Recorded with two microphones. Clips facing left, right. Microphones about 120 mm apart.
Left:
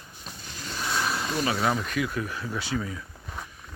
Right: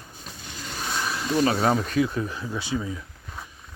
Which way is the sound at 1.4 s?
35° right (ahead or behind).